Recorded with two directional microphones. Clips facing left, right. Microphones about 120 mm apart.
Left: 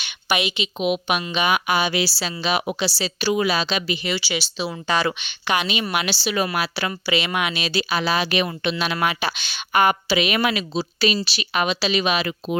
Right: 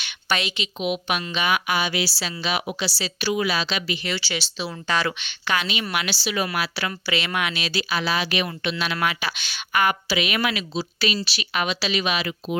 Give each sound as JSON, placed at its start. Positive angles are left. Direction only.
{"t": 0.0, "sound": "a woman's voice", "side_deg": 10}
{"t": 12.1, "sound": "speech", "side_deg": 45}